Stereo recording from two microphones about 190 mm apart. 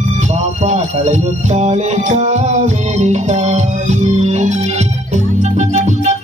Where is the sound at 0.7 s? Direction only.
35° right (ahead or behind).